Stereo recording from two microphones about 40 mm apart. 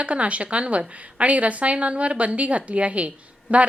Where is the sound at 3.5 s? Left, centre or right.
Right.